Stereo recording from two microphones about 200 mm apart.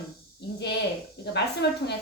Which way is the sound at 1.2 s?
60° left (ahead or behind).